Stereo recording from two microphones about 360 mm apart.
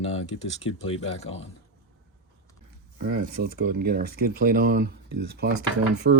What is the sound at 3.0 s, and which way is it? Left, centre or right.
Speech, right.